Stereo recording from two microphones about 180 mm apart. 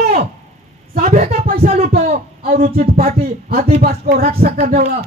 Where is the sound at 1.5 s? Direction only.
55° right (ahead or behind).